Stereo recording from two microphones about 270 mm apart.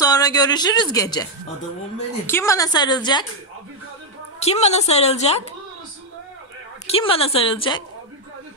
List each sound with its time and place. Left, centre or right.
0.0 s a woman's voice: centre
4.4 s a woman's voice: left
6.9 s a woman's voice: left